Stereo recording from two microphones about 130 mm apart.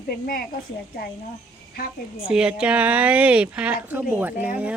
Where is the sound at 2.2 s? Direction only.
5° right (ahead or behind).